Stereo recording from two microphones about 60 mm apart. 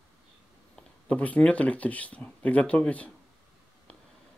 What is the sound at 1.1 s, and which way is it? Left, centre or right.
Speech, left.